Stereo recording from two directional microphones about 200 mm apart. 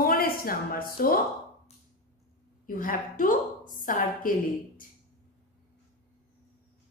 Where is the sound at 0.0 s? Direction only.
45° left (ahead or behind).